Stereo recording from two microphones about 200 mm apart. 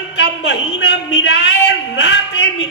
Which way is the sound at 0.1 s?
60° left (ahead or behind).